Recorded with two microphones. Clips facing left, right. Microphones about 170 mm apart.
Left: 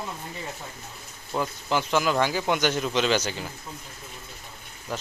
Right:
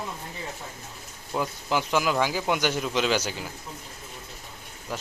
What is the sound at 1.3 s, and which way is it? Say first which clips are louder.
Speech: even; 5° right (ahead or behind).